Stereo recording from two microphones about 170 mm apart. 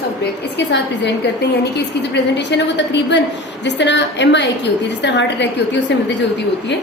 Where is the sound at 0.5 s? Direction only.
90° left.